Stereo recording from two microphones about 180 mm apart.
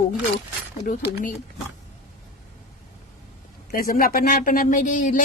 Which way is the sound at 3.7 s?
55° left (ahead or behind).